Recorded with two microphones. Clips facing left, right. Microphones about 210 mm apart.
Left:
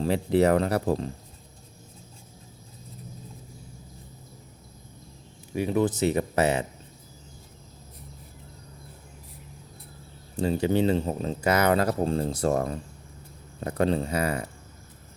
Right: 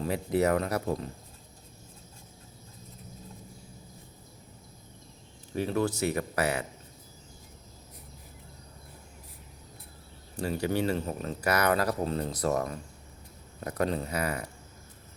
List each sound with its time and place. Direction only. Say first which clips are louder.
0.0 s speech: left 5 dB; 30° left (ahead or behind)
5.5 s speech: left 4 dB; 15° left (ahead or behind)
10.3 s speech: left 5 dB; 25° left (ahead or behind)